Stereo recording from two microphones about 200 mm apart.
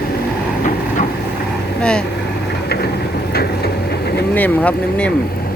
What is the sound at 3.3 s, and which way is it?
Train, 50° left (ahead or behind).